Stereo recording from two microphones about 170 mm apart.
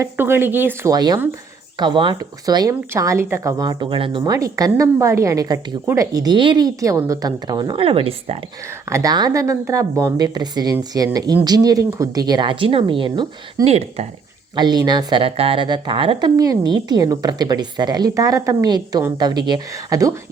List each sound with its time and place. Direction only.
0.0 s a woman's voice: 15° right (ahead or behind); by 4.2 s 30° right (ahead or behind)
4.2 s a woman's voice: 20° right (ahead or behind)
8.9 s a woman's voice: 20° right (ahead or behind); by 14.1 s 40° right (ahead or behind)
14.5 s a woman's voice: 25° right (ahead or behind)